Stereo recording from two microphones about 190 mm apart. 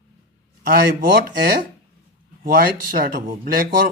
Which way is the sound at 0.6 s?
50° right (ahead or behind).